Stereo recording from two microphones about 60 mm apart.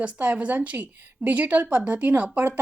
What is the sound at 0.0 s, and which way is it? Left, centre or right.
A woman's voice, right.